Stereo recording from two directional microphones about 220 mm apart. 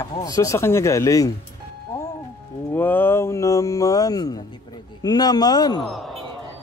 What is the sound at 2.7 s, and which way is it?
Speech, 10° left (ahead or behind).